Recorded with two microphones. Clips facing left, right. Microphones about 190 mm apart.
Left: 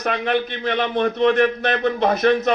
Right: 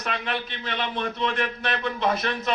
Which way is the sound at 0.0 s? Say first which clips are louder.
Left 9 dB; 45° left (ahead or behind).